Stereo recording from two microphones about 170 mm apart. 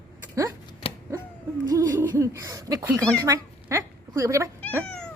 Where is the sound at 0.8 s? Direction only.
35° left (ahead or behind).